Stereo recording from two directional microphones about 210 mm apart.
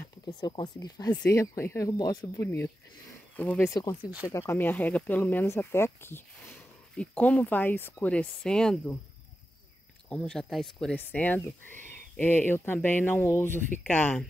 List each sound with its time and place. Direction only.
0.4 s speech: 20° left (ahead or behind)
4.0 s speech: 5° right (ahead or behind)
4.3 s speech: 15° left (ahead or behind)
10.0 s speech: 5° left (ahead or behind)